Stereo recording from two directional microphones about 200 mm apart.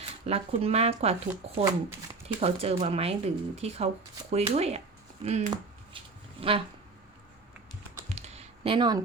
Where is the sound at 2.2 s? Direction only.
30° right (ahead or behind).